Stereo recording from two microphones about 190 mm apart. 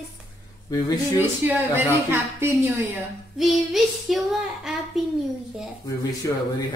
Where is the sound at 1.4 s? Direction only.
10° right (ahead or behind).